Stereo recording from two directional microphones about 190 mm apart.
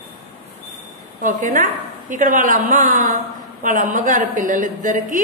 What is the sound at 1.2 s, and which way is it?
A woman's voice, 45° right (ahead or behind).